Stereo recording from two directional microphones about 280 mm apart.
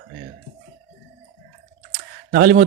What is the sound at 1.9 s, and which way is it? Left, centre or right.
Typing, right.